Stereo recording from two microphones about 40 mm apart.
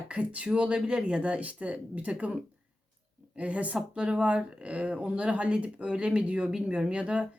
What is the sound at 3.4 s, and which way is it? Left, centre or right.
Speech, right.